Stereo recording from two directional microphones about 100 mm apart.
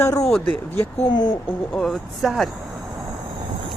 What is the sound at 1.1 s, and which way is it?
Speech, 45° left (ahead or behind).